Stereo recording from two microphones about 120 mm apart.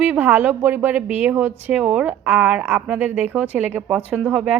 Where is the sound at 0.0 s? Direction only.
15° right (ahead or behind).